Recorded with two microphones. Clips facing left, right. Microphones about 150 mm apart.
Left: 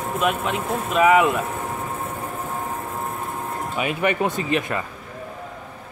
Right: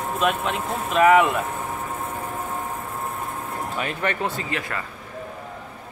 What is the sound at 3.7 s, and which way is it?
Speech, 10° left (ahead or behind).